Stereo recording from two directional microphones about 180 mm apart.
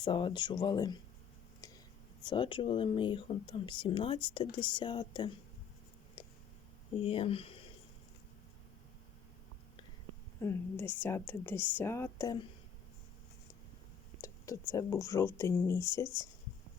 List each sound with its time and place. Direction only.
0.0 s speech: 25° left (ahead or behind)
2.2 s speech: 25° left (ahead or behind)
7.0 s speech: 30° left (ahead or behind)
10.4 s speech: 15° left (ahead or behind)
14.2 s a sound: 15° left (ahead or behind)
14.7 s speech: 15° left (ahead or behind)